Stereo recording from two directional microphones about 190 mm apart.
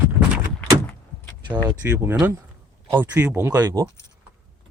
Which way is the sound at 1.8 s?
15° right (ahead or behind).